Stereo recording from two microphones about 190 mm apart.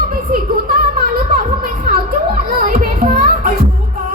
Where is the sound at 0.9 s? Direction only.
45° right (ahead or behind).